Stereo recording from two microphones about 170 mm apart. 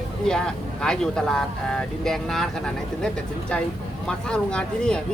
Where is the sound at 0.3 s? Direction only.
5° left (ahead or behind).